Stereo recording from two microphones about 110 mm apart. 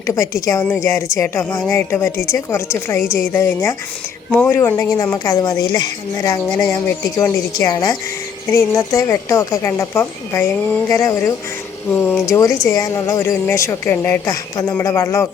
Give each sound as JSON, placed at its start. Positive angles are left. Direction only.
{"t": 0.1, "sound": "speech", "side_deg": 30}
{"t": 6.6, "sound": "speech", "side_deg": 20}
{"t": 11.9, "sound": "speech", "side_deg": 15}
{"t": 12.2, "sound": "speech", "side_deg": 30}
{"t": 14.3, "sound": "speech", "side_deg": 30}